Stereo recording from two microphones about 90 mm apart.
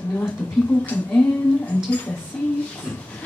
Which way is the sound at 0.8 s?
15° left (ahead or behind).